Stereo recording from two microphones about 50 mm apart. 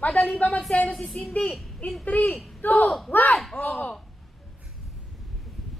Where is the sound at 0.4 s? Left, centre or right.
Left.